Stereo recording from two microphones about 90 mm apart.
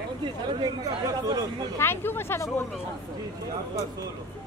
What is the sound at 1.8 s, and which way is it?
Speech, 25° left (ahead or behind).